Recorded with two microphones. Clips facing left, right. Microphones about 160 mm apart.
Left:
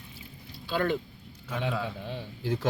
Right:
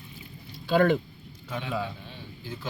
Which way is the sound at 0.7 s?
55° right (ahead or behind).